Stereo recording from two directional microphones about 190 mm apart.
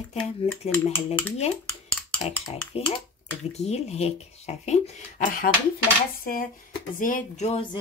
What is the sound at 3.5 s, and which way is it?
Speech, 35° left (ahead or behind).